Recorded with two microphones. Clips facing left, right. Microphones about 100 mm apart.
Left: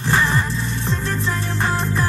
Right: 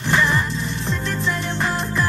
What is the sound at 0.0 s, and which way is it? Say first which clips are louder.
Music: even; 35° left (ahead or behind).